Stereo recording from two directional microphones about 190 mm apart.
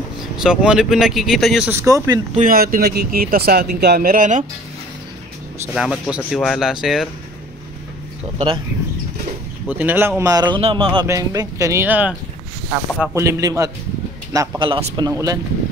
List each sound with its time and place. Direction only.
0.4 s speech: 5° right (ahead or behind)
2.3 s speech: 45° right (ahead or behind)
5.8 s speech: 5° right (ahead or behind)
9.7 s a man's voice: 10° right (ahead or behind); by 15.0 s 30° right (ahead or behind)
15.0 s a man's voice: 20° right (ahead or behind)